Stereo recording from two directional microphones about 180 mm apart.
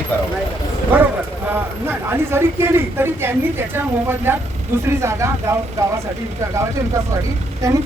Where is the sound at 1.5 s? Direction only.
10° right (ahead or behind).